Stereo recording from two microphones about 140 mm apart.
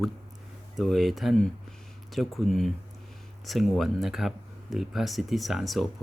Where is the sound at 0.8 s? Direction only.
Centre (ahead or behind).